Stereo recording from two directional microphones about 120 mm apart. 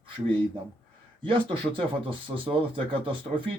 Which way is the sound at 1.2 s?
45° right (ahead or behind).